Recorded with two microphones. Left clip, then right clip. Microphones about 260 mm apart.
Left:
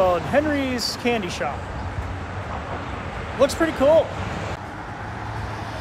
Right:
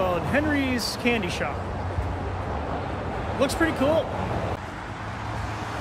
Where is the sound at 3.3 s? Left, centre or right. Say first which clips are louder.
Left 5 dB; centre.